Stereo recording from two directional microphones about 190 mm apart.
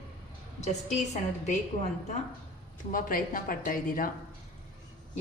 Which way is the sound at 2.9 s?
45° left (ahead or behind).